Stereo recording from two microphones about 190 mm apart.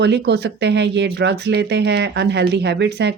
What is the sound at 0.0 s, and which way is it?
Speech, 60° right (ahead or behind).